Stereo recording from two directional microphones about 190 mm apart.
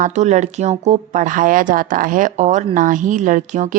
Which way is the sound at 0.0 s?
35° right (ahead or behind).